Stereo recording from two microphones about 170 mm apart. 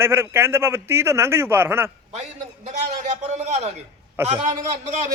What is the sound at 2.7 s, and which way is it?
A man's voice, 45° right (ahead or behind).